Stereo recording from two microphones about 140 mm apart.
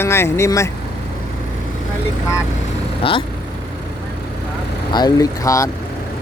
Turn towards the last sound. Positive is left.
turn(degrees=25)  # may be behind; listen again after turning